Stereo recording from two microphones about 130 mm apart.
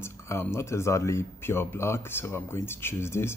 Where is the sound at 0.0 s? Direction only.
20° left (ahead or behind).